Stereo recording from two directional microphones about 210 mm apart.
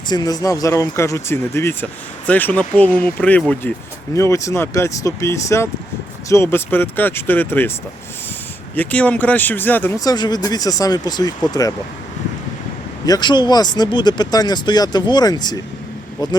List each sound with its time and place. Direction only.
0.1 s speech: 20° left (ahead or behind)
8.7 s speech: 5° left (ahead or behind)
13.1 s speech: 20° left (ahead or behind)